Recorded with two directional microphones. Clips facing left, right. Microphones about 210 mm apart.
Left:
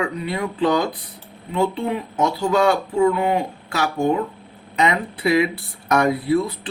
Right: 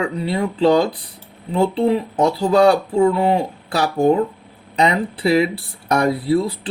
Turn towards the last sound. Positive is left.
turn(degrees=-30)  # may be behind; listen again after turning